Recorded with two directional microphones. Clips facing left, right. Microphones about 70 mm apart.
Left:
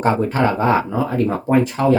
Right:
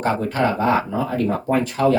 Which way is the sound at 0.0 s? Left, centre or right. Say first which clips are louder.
Left 3 dB; left.